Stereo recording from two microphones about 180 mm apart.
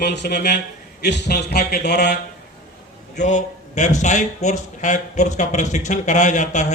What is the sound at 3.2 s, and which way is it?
Speech, 40° left (ahead or behind).